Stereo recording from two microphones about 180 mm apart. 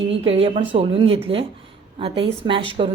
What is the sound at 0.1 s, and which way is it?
A woman's voice, 30° right (ahead or behind).